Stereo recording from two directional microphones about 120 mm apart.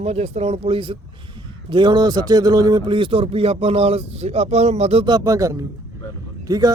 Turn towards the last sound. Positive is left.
turn(degrees=-30)  # may be behind; listen again after turning